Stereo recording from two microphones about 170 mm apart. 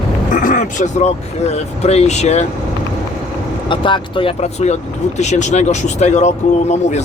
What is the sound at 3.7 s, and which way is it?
Speech, 30° left (ahead or behind).